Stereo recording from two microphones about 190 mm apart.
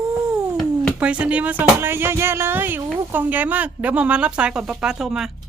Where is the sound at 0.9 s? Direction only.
5° right (ahead or behind).